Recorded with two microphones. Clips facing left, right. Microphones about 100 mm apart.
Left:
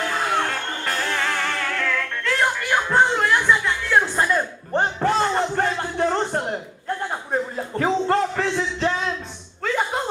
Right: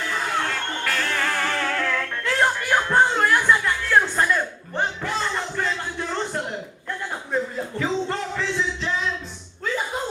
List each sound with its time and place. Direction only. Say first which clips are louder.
0.0 s music: left 3 dB; 55° left (ahead or behind)
1.2 s music: even; 10° right (ahead or behind)
3.8 s music: even; 10° left (ahead or behind)
4.7 s a sound: left 7 dB; 45° left (ahead or behind)
9.6 s slap: left 3 dB; 60° left (ahead or behind)